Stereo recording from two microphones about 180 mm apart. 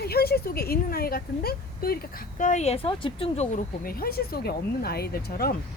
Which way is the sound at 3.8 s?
55° left (ahead or behind).